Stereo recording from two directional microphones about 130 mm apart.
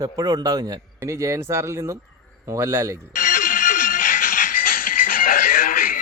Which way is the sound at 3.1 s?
90° left.